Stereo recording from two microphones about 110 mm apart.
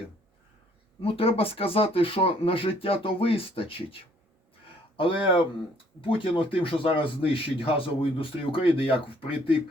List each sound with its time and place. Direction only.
1.0 s speech: 60° left (ahead or behind)